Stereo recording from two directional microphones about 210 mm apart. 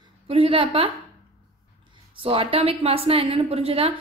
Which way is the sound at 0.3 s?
25° right (ahead or behind).